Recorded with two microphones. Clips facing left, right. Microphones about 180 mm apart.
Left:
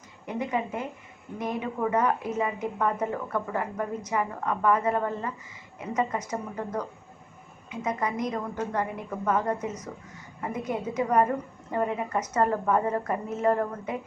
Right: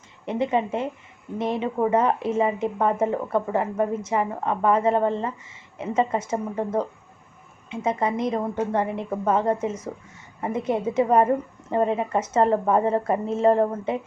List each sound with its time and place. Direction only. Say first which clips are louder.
0.3 s speech: right 6 dB; 25° right (ahead or behind)